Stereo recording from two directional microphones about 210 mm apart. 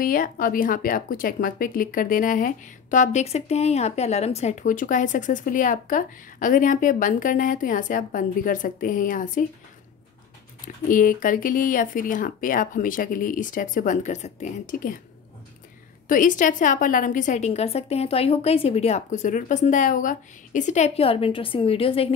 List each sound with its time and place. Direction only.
0.0 s a woman's voice: 40° left (ahead or behind)
10.9 s a woman's voice: 40° left (ahead or behind)
16.1 s a woman's voice: 40° left (ahead or behind)